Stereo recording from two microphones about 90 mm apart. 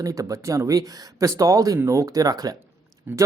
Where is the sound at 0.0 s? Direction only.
35° right (ahead or behind).